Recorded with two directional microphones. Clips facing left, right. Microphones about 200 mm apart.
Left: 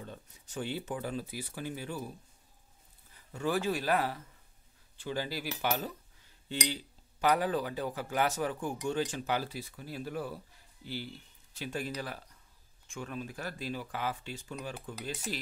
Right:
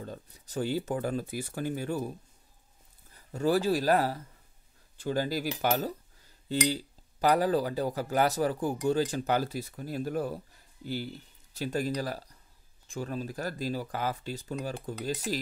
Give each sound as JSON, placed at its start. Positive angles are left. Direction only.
{"t": 0.0, "sound": "speech", "side_deg": -40}
{"t": 3.3, "sound": "speech", "side_deg": -35}